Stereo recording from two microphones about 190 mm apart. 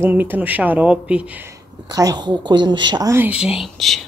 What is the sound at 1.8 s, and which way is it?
Speech, 20° right (ahead or behind).